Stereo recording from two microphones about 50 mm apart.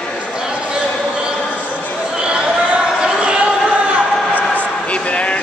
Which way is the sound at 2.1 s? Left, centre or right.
Centre.